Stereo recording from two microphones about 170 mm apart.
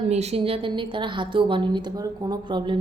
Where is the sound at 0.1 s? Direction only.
40° right (ahead or behind).